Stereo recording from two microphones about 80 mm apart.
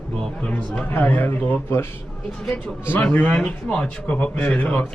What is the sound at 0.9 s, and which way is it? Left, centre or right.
Speech, left.